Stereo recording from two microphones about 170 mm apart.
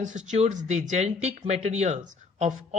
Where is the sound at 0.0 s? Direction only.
45° right (ahead or behind).